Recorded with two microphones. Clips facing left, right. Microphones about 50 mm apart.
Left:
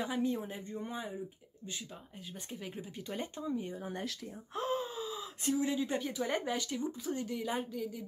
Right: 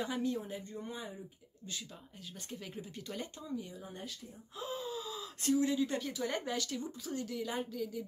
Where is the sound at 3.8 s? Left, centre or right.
Left.